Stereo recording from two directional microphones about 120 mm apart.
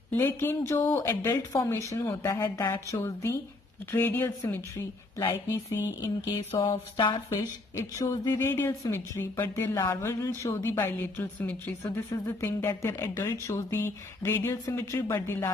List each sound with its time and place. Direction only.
0.2 s speech: 20° left (ahead or behind)
5.2 s speech: 30° left (ahead or behind)
7.2 s speech: 25° left (ahead or behind)